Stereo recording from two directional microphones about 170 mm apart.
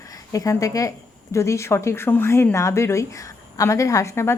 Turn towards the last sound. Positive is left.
turn(degrees=15)  # may be behind; listen again after turning